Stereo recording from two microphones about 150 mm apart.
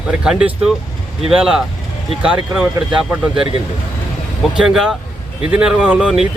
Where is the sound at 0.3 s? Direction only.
5° right (ahead or behind).